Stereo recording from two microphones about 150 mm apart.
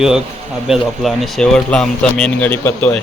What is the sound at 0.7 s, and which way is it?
A man's voice, centre (ahead or behind).